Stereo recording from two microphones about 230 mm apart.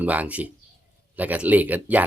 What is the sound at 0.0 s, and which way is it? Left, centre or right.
Speech, centre.